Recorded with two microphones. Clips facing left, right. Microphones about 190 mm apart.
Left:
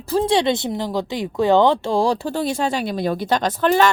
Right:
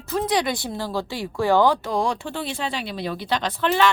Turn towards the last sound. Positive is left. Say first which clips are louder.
# left 4 dB
turn(degrees=45)  # may be behind; listen again after turning